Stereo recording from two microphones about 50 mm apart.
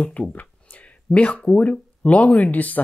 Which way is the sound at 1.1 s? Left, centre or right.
Left.